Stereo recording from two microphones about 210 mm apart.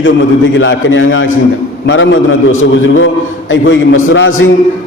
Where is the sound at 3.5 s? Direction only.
65° left (ahead or behind).